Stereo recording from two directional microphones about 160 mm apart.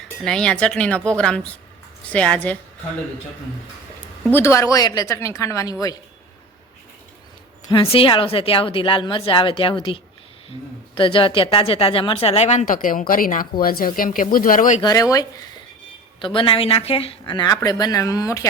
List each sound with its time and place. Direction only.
0.3 s a woman's voice: 5° left (ahead or behind)
4.2 s speech: 15° left (ahead or behind)
7.7 s a woman's voice: 35° left (ahead or behind); by 14.8 s 60° left (ahead or behind)
14.8 s speech: 25° left (ahead or behind)
16.2 s speech: 30° left (ahead or behind)